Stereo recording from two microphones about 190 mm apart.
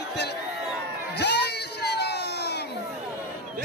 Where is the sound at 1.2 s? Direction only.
60° left (ahead or behind).